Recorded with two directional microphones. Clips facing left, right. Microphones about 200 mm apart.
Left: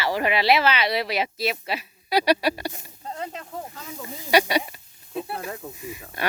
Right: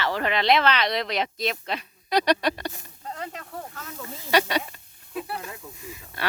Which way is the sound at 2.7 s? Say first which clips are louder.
Left 2 dB; 25° left (ahead or behind).